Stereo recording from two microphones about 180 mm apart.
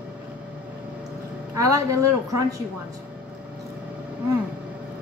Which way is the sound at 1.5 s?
20° right (ahead or behind).